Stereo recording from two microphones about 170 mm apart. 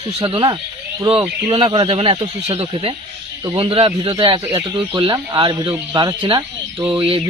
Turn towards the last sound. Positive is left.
turn(degrees=-35)  # may be behind; listen again after turning